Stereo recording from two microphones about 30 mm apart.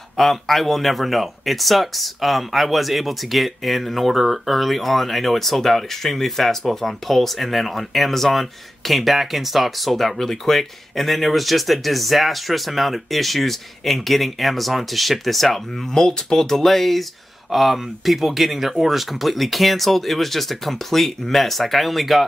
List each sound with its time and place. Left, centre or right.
0.2 s speech: centre
16.0 s speech: centre